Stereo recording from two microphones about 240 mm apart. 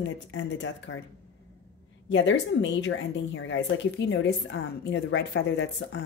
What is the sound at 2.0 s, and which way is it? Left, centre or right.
A woman's voice, left.